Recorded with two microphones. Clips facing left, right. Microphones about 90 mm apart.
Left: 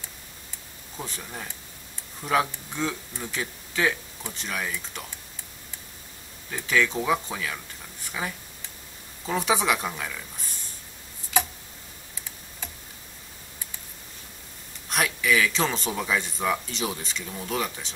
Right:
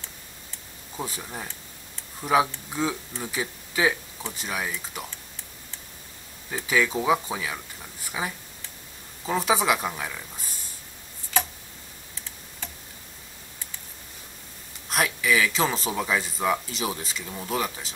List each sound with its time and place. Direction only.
0.9 s speech: 10° right (ahead or behind)
6.5 s speech: 10° right (ahead or behind)
14.9 s speech: centre (ahead or behind)